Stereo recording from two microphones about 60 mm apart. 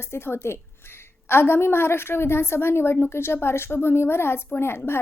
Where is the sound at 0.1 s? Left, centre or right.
Left.